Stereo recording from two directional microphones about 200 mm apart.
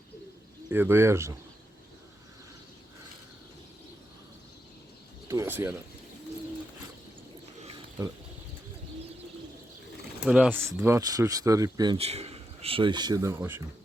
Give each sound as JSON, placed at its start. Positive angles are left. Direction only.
{"t": 0.7, "sound": "speech", "side_deg": -10}
{"t": 5.3, "sound": "bird", "side_deg": -15}
{"t": 10.2, "sound": "speech", "side_deg": -5}